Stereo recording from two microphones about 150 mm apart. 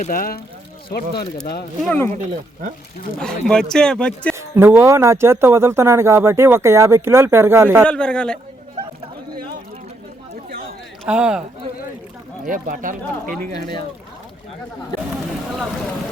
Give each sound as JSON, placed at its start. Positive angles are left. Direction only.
{"t": 0.0, "sound": "speech", "side_deg": 65}
{"t": 0.9, "sound": "speech", "side_deg": 90}
{"t": 2.1, "sound": "speech", "side_deg": -55}
{"t": 3.2, "sound": "speech", "side_deg": 5}
{"t": 4.4, "sound": "speech", "side_deg": -15}
{"t": 7.9, "sound": "a man's voice", "side_deg": 5}
{"t": 11.0, "sound": "speech", "side_deg": -5}
{"t": 12.5, "sound": "speech", "side_deg": -65}
{"t": 13.2, "sound": "a man's voice", "side_deg": 10}